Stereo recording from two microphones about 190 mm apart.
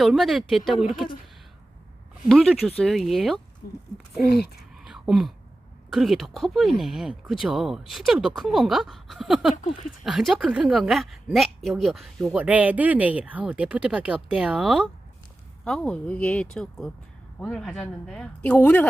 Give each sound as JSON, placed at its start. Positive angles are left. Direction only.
{"t": 0.0, "sound": "speech", "side_deg": 0}
{"t": 2.3, "sound": "speech", "side_deg": 5}
{"t": 3.6, "sound": "speech", "side_deg": 55}
{"t": 4.7, "sound": "a sound", "side_deg": 0}
{"t": 5.9, "sound": "speech", "side_deg": 0}